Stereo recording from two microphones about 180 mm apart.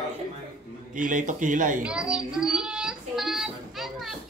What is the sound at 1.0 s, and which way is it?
Speech, 45° right (ahead or behind).